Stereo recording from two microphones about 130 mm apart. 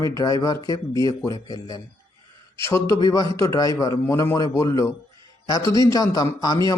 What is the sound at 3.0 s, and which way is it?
A man's voice, 30° left (ahead or behind).